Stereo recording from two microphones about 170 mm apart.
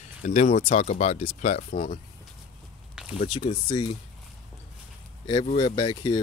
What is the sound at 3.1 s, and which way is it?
Speech, 35° left (ahead or behind).